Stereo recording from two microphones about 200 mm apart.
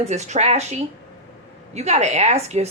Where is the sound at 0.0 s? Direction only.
35° right (ahead or behind).